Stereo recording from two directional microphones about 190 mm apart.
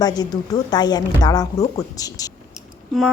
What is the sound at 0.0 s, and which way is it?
Speech, 20° left (ahead or behind).